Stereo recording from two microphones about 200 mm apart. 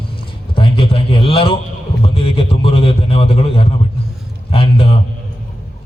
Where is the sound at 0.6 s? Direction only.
25° left (ahead or behind).